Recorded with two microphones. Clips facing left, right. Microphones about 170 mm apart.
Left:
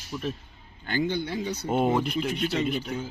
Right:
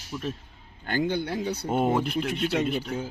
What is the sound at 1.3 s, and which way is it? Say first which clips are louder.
Speech: right 1 dB; 55° right (ahead or behind).